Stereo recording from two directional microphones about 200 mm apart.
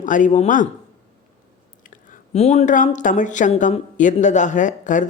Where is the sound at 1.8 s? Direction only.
40° left (ahead or behind).